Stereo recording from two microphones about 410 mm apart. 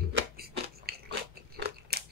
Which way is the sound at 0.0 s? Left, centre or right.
Right.